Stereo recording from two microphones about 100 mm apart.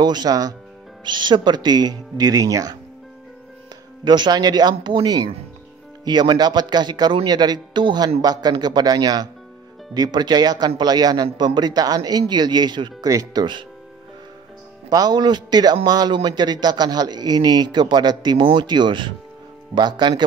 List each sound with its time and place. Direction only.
0.0 s speech: 45° right (ahead or behind)
1.0 s a man's voice: 50° right (ahead or behind)
4.0 s a man's voice: 50° right (ahead or behind)
14.9 s a man's voice: 40° right (ahead or behind)